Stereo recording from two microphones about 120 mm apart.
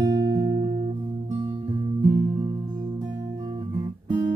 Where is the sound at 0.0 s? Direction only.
30° right (ahead or behind).